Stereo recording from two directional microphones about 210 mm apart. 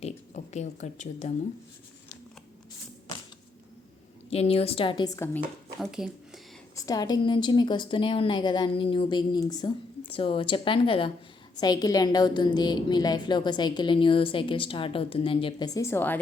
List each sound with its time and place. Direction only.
0.0 s speech: 35° left (ahead or behind)
4.3 s a woman's voice: 30° left (ahead or behind); by 5.4 s 15° left (ahead or behind)
5.8 s speech: centre (ahead or behind)
6.7 s a woman's voice: 15° left (ahead or behind)